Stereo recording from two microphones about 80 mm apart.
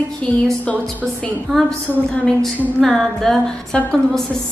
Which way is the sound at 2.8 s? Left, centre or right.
Centre.